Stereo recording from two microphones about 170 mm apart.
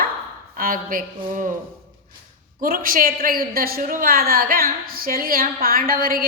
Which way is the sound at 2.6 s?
55° right (ahead or behind).